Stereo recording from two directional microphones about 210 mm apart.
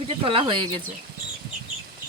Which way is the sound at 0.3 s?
25° right (ahead or behind).